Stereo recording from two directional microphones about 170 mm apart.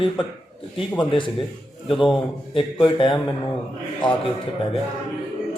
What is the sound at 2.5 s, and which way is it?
Speech, 30° left (ahead or behind).